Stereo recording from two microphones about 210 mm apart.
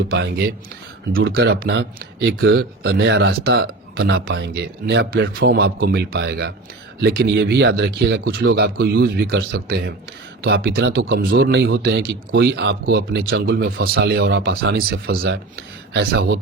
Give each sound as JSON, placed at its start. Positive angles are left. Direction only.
{"t": 0.1, "sound": "speech", "side_deg": -50}